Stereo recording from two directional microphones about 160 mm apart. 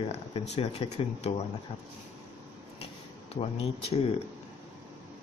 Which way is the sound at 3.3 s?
40° left (ahead or behind).